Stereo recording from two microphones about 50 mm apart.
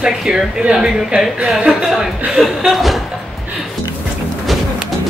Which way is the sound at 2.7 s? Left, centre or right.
Centre.